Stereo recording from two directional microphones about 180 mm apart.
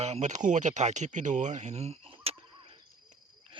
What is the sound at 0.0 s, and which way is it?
Speech, 40° right (ahead or behind).